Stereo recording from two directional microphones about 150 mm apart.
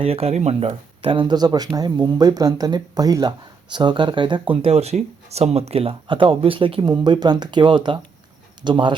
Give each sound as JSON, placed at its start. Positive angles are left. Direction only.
{"t": 0.0, "sound": "speech", "side_deg": -40}